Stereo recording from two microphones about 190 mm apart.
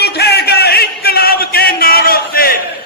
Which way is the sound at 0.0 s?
60° left (ahead or behind).